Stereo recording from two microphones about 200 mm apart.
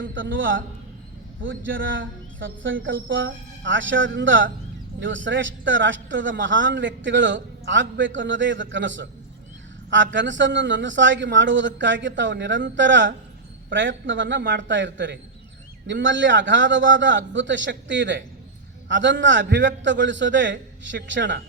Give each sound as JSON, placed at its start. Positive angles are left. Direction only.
{"t": 0.0, "sound": "a man's voice", "side_deg": -70}